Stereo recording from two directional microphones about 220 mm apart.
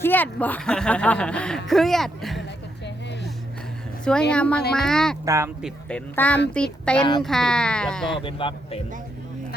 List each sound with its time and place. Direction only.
0.0 s speech: 10° left (ahead or behind)
4.3 s speech: 5° left (ahead or behind)
5.2 s speech: 15° right (ahead or behind)
5.6 s speech: 5° left (ahead or behind)
8.2 s a man's voice: 20° left (ahead or behind)